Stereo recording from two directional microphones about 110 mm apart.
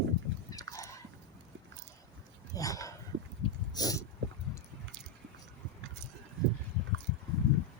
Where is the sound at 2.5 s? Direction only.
30° left (ahead or behind).